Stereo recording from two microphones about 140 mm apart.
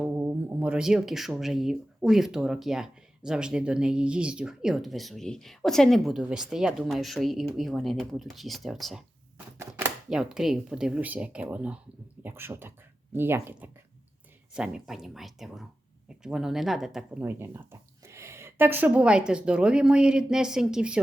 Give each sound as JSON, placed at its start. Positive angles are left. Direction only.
{"t": 0.0, "sound": "speech", "side_deg": -10}
{"t": 9.6, "sound": "a sound", "side_deg": -15}
{"t": 10.1, "sound": "speech", "side_deg": -5}
{"t": 17.2, "sound": "speech", "side_deg": -15}